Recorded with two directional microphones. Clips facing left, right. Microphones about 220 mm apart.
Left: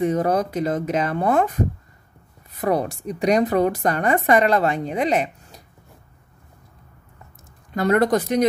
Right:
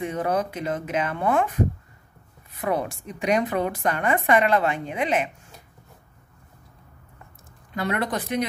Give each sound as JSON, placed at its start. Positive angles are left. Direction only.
{"t": 0.0, "sound": "a woman's voice", "side_deg": 40}
{"t": 2.6, "sound": "a woman's voice", "side_deg": 40}
{"t": 7.7, "sound": "speech", "side_deg": 45}